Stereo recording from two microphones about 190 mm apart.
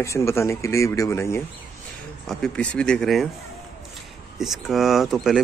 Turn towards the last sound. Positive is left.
turn(degrees=0)  # may be behind; listen again after turning